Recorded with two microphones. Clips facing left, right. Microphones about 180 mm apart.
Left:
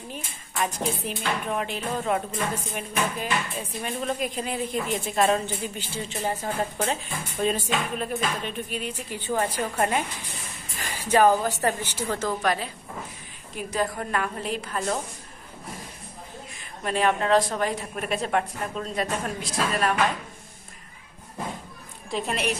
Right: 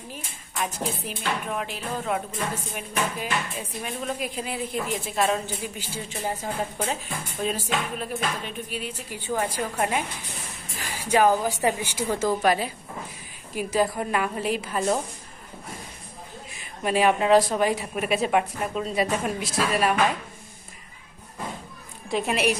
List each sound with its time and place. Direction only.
0.6 s speech: 5° right (ahead or behind)
16.8 s speech: 10° right (ahead or behind)
22.1 s speech: 5° right (ahead or behind)